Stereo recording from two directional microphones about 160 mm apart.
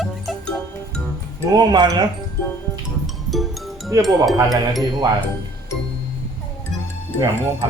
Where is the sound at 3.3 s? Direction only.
Centre (ahead or behind).